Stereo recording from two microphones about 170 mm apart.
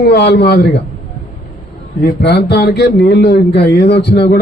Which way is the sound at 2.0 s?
75° left (ahead or behind).